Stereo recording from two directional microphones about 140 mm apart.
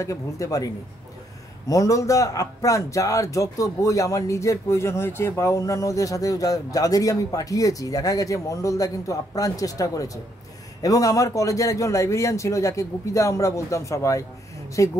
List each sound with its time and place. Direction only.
0.0 s speech: 25° left (ahead or behind)
1.7 s speech: 25° left (ahead or behind)